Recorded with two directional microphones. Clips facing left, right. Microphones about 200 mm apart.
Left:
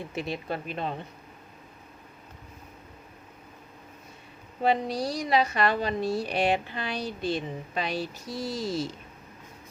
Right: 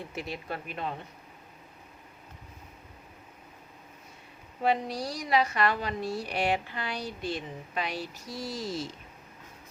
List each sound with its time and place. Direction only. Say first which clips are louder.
0.2 s a woman's voice: left 5 dB; 25° left (ahead or behind)
4.6 s a woman's voice: left 3 dB; 25° left (ahead or behind)